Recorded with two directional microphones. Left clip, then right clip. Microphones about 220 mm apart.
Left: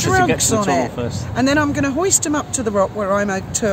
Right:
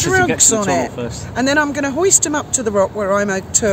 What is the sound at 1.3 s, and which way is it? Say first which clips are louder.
Speech: right 1 dB; 20° right (ahead or behind).